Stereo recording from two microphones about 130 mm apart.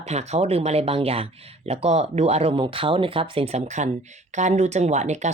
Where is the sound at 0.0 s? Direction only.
55° right (ahead or behind).